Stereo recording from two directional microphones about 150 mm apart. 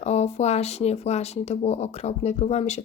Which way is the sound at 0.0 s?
45° left (ahead or behind).